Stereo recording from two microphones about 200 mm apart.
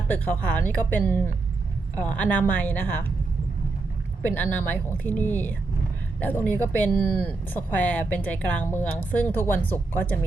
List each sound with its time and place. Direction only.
0.1 s speech: 10° left (ahead or behind)
4.3 s speech: 10° left (ahead or behind)